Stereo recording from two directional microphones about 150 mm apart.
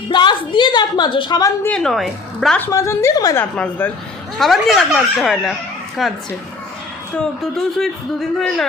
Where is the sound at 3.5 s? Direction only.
10° left (ahead or behind).